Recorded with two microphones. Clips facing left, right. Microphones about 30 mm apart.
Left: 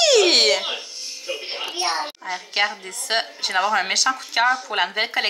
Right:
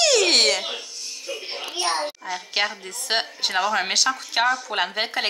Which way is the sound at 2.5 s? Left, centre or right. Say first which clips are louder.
Left 3 dB; centre.